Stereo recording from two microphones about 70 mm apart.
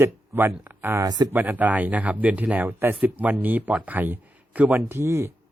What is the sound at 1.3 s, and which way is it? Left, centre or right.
A man's voice, right.